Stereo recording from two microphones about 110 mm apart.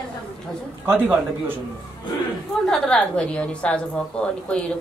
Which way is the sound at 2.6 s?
5° left (ahead or behind).